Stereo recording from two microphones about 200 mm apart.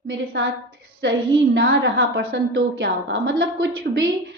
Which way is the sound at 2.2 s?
50° right (ahead or behind).